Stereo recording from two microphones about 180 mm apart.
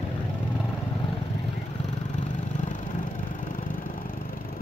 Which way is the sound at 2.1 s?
40° left (ahead or behind).